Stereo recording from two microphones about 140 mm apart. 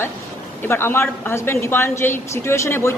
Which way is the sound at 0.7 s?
15° left (ahead or behind).